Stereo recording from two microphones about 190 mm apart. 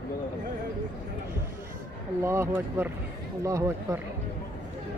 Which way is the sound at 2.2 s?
15° right (ahead or behind).